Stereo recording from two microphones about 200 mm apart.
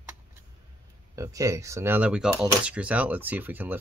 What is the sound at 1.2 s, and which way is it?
Speech, 15° right (ahead or behind).